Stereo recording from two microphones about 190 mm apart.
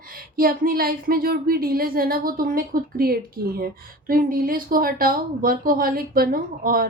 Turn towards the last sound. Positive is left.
turn(degrees=-50)  # may be behind; listen again after turning